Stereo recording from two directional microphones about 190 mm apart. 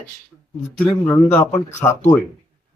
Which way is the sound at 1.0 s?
10° left (ahead or behind).